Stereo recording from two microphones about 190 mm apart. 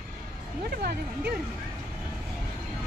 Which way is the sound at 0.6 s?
55° right (ahead or behind).